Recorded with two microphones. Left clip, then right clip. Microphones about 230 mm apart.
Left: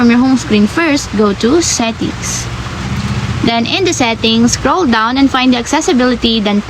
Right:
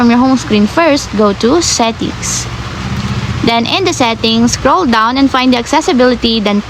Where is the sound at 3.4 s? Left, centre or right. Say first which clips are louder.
Right 1 dB; right.